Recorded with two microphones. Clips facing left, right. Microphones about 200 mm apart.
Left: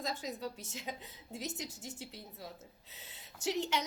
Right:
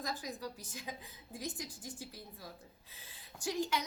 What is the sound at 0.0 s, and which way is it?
A woman's voice, 25° left (ahead or behind).